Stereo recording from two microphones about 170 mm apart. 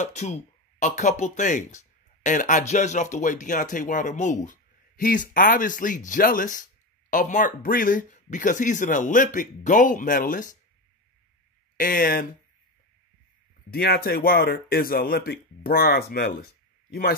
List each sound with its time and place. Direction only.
0.0 s speech: 45° left (ahead or behind)
11.7 s speech: 55° left (ahead or behind)
13.7 s speech: 65° left (ahead or behind)